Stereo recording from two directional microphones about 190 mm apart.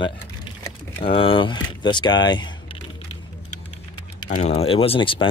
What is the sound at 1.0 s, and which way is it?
Speech, 30° left (ahead or behind).